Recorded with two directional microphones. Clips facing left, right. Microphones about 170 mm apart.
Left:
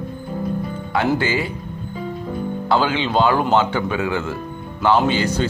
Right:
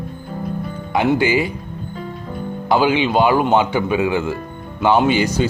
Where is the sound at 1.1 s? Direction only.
15° right (ahead or behind).